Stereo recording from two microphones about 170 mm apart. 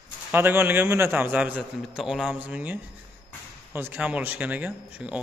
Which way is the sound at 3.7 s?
10° right (ahead or behind).